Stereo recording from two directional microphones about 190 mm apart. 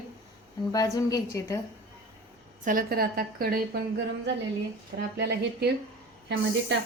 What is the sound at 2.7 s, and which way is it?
A woman's voice, 50° right (ahead or behind).